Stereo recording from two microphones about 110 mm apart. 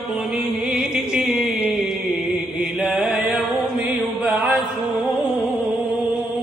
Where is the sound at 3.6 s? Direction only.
Centre (ahead or behind).